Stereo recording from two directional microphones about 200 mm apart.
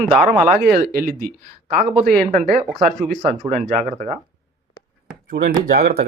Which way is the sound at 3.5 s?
40° right (ahead or behind).